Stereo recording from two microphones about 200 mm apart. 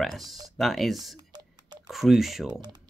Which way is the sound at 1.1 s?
20° right (ahead or behind).